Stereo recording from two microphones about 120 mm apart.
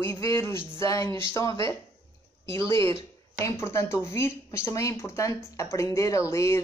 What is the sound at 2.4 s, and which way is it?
Speech, 25° left (ahead or behind).